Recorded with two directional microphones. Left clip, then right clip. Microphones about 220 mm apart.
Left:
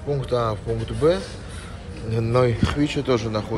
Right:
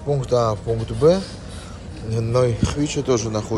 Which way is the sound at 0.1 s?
25° right (ahead or behind).